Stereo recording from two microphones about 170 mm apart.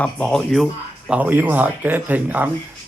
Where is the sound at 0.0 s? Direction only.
5° left (ahead or behind).